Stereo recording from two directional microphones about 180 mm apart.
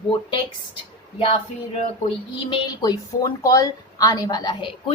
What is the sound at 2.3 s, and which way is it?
A woman's voice, 25° left (ahead or behind).